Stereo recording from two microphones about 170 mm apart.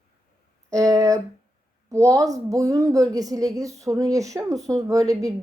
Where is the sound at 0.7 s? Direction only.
20° right (ahead or behind).